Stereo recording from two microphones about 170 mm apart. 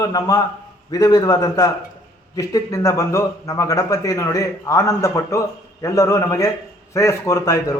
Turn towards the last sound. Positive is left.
turn(degrees=20)  # may be behind; listen again after turning